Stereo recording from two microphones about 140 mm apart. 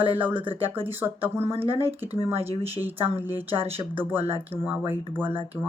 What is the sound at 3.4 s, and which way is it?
Speech, 40° right (ahead or behind).